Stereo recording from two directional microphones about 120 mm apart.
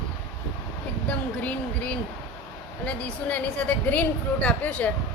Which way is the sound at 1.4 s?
10° left (ahead or behind).